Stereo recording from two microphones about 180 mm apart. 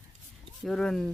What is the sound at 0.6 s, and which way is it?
Speech, centre (ahead or behind).